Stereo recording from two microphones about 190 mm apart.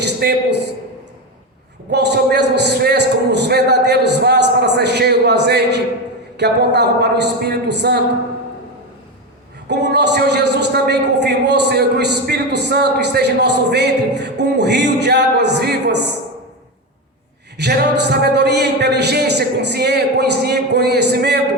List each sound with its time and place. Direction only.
0.0 s a sound: 55° right (ahead or behind)
1.9 s a man's voice: 60° right (ahead or behind)
9.6 s a man's voice: 60° right (ahead or behind)
17.6 s a man's voice: 60° right (ahead or behind)